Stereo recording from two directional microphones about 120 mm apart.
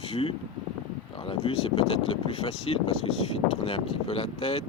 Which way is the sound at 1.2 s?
45° left (ahead or behind).